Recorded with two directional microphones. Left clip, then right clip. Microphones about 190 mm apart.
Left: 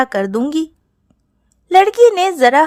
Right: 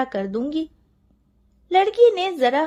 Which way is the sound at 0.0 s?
25° left (ahead or behind).